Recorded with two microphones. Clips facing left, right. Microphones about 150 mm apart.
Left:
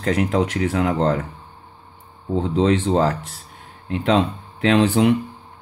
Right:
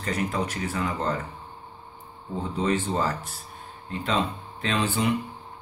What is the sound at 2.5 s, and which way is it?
Speech, 90° left.